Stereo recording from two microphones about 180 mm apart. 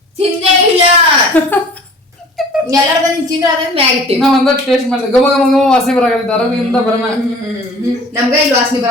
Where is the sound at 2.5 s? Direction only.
5° right (ahead or behind).